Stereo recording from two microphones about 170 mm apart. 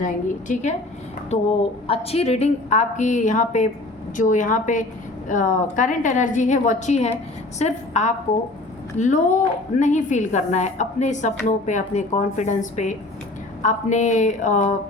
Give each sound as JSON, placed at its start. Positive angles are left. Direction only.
{"t": 0.0, "sound": "a woman's voice", "side_deg": 45}
{"t": 1.9, "sound": "a woman's voice", "side_deg": 35}